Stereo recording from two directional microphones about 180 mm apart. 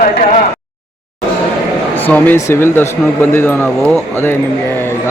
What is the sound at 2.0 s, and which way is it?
Speech, 10° left (ahead or behind).